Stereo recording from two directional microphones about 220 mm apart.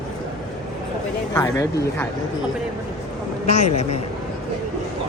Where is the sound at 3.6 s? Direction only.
30° left (ahead or behind).